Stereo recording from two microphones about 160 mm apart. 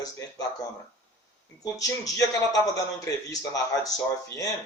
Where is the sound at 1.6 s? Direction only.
20° left (ahead or behind).